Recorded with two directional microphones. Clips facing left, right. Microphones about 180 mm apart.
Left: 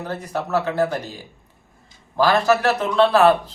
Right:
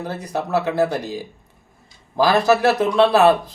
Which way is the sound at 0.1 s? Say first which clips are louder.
Right 1 dB; 15° right (ahead or behind).